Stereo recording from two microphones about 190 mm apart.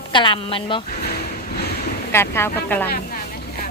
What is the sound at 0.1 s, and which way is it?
Speech, 25° left (ahead or behind).